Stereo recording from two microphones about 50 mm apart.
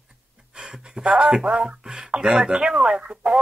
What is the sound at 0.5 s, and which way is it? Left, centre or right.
Speech, centre.